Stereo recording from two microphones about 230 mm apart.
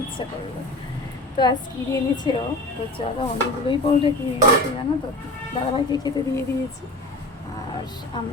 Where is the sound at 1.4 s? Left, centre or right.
Centre.